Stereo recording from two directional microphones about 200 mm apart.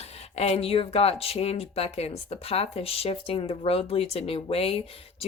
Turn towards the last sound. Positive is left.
turn(degrees=30)  # may be behind; listen again after turning